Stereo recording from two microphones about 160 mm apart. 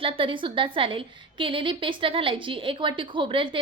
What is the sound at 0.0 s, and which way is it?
A woman's voice, 35° right (ahead or behind).